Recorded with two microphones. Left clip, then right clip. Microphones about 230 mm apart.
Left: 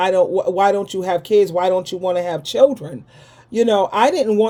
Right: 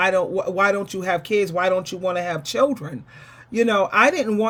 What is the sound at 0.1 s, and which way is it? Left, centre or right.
Speech, right.